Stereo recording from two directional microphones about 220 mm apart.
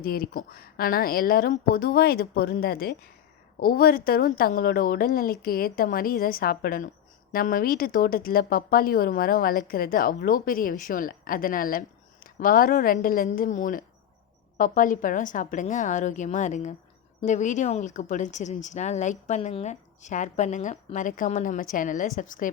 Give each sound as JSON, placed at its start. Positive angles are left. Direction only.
{"t": 0.0, "sound": "a woman's voice", "side_deg": 45}